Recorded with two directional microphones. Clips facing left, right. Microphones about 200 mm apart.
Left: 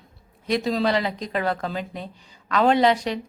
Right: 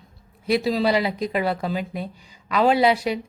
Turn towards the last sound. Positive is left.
turn(degrees=-10)  # may be behind; listen again after turning